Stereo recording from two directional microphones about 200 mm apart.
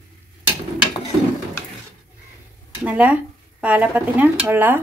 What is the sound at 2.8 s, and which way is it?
A woman's voice, 5° right (ahead or behind).